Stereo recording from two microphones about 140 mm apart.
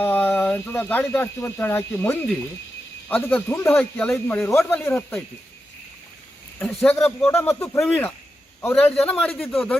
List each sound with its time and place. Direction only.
0.0 s speech: 15° left (ahead or behind)
6.8 s speech: 10° left (ahead or behind)
7.8 s speech: 10° left (ahead or behind)